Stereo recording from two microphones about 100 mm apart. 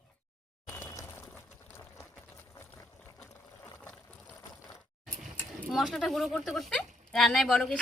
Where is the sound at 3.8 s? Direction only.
10° left (ahead or behind).